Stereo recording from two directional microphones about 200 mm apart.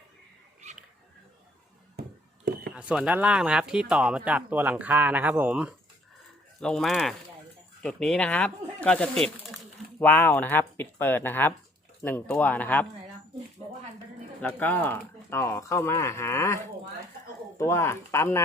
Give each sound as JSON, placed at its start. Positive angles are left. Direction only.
{"t": 2.4, "sound": "a sound", "side_deg": -55}
{"t": 2.7, "sound": "speech", "side_deg": -5}
{"t": 14.4, "sound": "speech", "side_deg": 10}
{"t": 17.6, "sound": "speech", "side_deg": 15}